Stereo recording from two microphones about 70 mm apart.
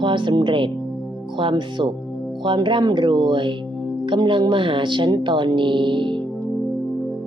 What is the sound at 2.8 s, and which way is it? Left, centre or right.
Speech, right.